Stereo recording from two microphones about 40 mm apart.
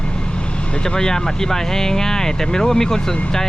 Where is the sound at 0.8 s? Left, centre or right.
Centre.